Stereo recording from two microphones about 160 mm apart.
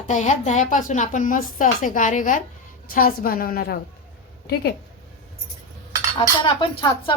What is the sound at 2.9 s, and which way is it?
Speech, 65° left (ahead or behind).